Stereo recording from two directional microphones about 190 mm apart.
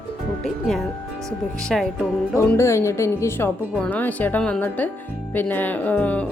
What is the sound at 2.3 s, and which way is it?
Speech, 15° left (ahead or behind).